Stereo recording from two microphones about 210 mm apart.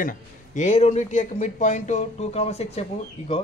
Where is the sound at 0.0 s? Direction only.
40° left (ahead or behind).